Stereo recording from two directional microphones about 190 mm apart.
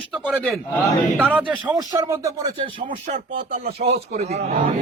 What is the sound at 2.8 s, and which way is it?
A man's voice, 40° right (ahead or behind).